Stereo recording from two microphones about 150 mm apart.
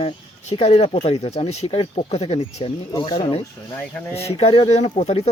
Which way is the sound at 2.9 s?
30° left (ahead or behind).